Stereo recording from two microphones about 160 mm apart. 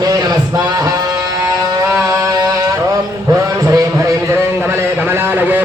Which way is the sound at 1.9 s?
20° right (ahead or behind).